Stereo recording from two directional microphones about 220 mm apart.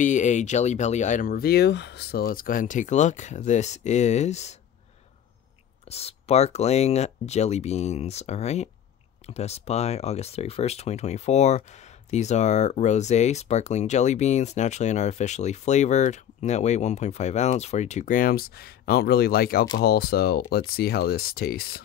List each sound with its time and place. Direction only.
0.0 s speech: 35° left (ahead or behind)
5.9 s speech: 30° left (ahead or behind); by 21.8 s 45° left (ahead or behind)